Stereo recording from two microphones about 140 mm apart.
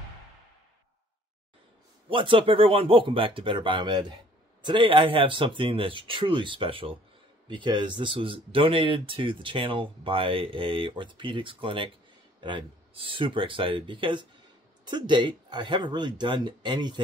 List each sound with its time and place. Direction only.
2.0 s speech: 40° right (ahead or behind)